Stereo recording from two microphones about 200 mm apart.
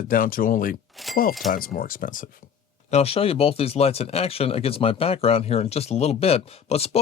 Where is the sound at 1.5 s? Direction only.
45° left (ahead or behind).